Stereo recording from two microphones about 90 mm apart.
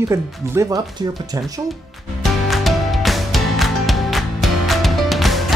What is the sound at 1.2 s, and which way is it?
Speech, 45° right (ahead or behind).